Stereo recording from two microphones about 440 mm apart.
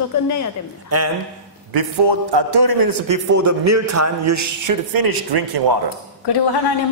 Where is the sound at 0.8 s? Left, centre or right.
Right.